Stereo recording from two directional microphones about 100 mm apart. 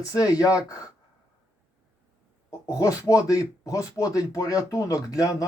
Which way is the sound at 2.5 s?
35° left (ahead or behind).